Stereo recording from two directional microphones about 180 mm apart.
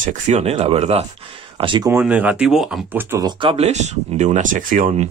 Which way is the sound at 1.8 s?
10° right (ahead or behind).